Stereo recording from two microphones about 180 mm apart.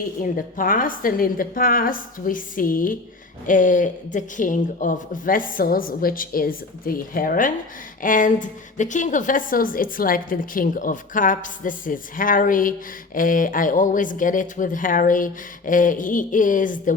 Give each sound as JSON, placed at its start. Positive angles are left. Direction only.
{"t": 0.2, "sound": "a woman's voice", "side_deg": 50}